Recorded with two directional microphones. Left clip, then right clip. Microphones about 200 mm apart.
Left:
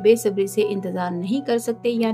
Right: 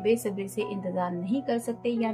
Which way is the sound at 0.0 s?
45° left (ahead or behind).